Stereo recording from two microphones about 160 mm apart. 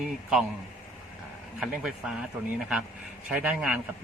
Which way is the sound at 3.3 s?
10° right (ahead or behind).